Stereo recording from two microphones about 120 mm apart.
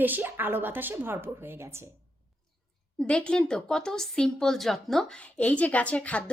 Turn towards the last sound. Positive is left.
turn(degrees=10)  # may be behind; listen again after turning